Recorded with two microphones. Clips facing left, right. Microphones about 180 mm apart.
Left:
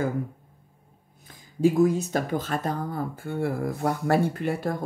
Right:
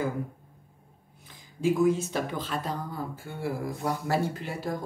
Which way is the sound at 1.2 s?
40° left (ahead or behind).